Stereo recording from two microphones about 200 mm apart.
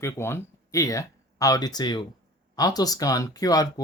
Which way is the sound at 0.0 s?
10° left (ahead or behind).